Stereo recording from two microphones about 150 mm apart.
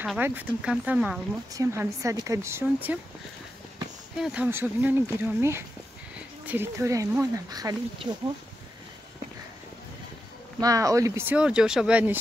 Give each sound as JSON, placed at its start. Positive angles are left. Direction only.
{"t": 0.0, "sound": "speech", "side_deg": -10}
{"t": 1.5, "sound": "speech", "side_deg": -20}
{"t": 4.2, "sound": "speech", "side_deg": -10}
{"t": 8.0, "sound": "speech", "side_deg": -35}
{"t": 10.6, "sound": "speech", "side_deg": -20}